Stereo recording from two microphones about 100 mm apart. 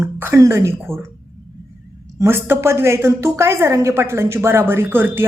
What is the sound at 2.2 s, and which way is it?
A woman's voice, 25° right (ahead or behind).